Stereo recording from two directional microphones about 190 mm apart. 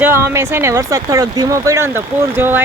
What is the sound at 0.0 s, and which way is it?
Speech, 10° right (ahead or behind).